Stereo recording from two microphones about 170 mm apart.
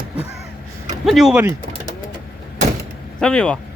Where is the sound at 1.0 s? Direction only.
Centre (ahead or behind).